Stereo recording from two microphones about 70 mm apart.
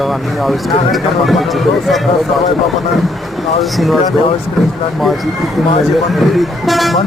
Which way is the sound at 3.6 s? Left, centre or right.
Centre.